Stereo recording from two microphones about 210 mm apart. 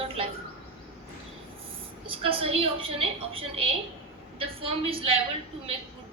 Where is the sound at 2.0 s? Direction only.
25° right (ahead or behind).